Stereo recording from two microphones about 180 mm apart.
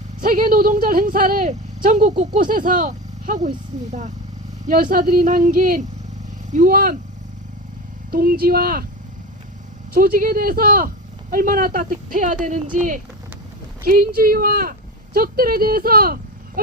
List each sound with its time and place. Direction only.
0.2 s speech: 50° right (ahead or behind)
4.6 s speech: 45° right (ahead or behind)
8.1 s speech: 55° right (ahead or behind)
9.9 s speech: 55° right (ahead or behind)